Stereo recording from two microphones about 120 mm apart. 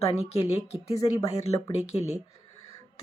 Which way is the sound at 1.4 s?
60° left (ahead or behind).